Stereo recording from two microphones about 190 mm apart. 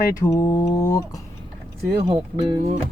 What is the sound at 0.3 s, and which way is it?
Speech, 15° left (ahead or behind).